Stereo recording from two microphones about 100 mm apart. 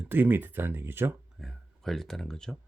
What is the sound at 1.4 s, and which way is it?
Speech, centre (ahead or behind).